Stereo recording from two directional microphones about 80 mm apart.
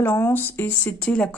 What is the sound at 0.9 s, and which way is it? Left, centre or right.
Speech, centre.